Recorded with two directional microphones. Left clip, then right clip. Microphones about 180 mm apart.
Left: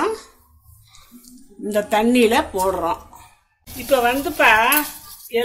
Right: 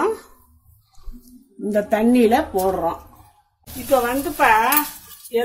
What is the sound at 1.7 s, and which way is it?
A woman's voice, 35° right (ahead or behind).